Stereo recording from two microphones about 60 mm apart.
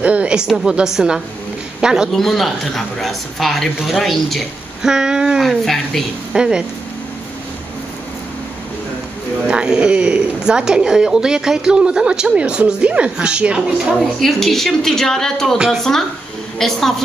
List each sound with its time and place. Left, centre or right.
0.0 s a man's voice: right
2.1 s speech: centre
4.8 s speech: centre
5.4 s speech: centre
6.3 s speech: centre
9.5 s speech: centre
13.9 s a woman's voice: centre